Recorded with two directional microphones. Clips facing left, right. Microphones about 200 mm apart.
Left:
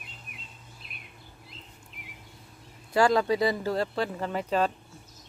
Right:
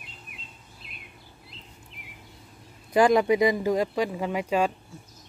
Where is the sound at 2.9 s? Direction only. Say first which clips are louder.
Right 3 dB; 15° right (ahead or behind).